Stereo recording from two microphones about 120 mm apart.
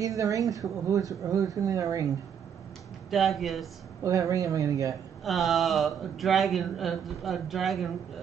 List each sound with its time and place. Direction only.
0.0 s a woman's voice: 30° right (ahead or behind)
3.1 s speech: centre (ahead or behind)
4.0 s a woman's voice: 25° right (ahead or behind)
5.2 s speech: centre (ahead or behind)